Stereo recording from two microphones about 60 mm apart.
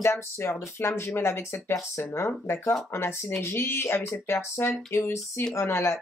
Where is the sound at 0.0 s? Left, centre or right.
Left.